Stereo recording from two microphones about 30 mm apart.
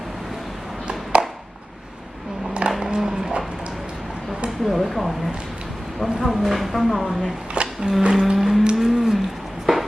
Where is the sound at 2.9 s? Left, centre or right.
Centre.